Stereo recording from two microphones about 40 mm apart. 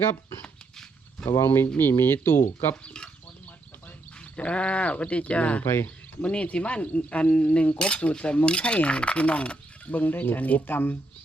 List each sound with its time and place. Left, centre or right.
1.4 s speech: left
1.8 s speech: left
2.8 s speech: left
4.4 s speech: left
5.6 s speech: left
6.2 s speech: left
9.9 s speech: left